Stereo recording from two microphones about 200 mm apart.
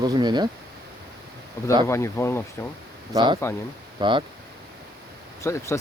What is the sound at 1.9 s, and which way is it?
Speech, 15° left (ahead or behind).